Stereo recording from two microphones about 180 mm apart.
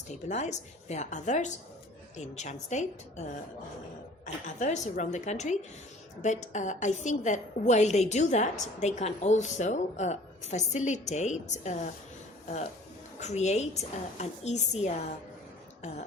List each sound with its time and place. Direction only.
0.1 s a woman's voice: 40° left (ahead or behind)
4.4 s a woman's voice: 40° left (ahead or behind)
13.1 s a woman's voice: 40° left (ahead or behind)